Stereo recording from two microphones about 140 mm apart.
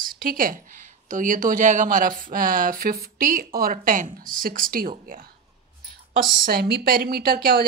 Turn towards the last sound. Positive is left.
turn(degrees=-90)